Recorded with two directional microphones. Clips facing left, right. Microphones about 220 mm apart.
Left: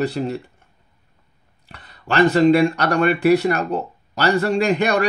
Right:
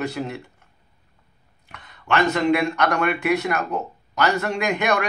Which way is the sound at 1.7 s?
35° left (ahead or behind).